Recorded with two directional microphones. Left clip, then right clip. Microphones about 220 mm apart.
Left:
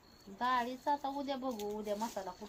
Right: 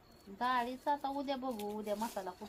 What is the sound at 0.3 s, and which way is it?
Speech, 20° right (ahead or behind).